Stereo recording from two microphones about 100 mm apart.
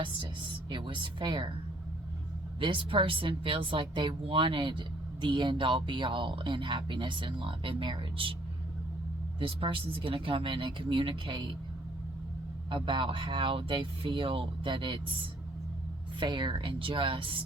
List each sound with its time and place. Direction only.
0.7 s a woman's voice: 55° right (ahead or behind)
2.6 s a woman's voice: 55° right (ahead or behind)
9.4 s a woman's voice: 60° right (ahead or behind)
12.7 s a woman's voice: 55° right (ahead or behind)
16.2 s a woman's voice: 55° right (ahead or behind)